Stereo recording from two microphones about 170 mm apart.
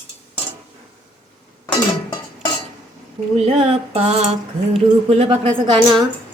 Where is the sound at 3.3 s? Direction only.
35° right (ahead or behind).